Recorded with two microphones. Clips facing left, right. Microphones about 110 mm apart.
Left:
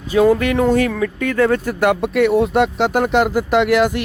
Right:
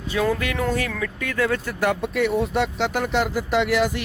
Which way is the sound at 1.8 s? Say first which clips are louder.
Left 6 dB; 65° left (ahead or behind).